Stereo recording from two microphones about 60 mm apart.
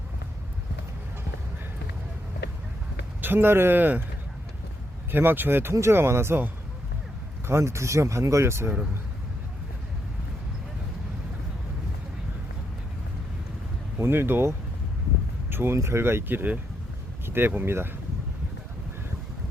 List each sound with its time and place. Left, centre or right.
3.2 s speech: right
3.8 s speech: right
5.1 s speech: right
7.4 s speech: right
14.0 s speech: right